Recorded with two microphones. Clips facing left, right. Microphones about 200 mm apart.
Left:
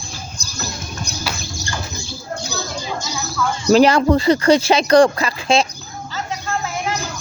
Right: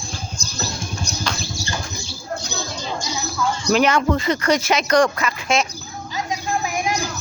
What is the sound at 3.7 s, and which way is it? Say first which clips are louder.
Speech: left 6 dB; 35° left (ahead or behind).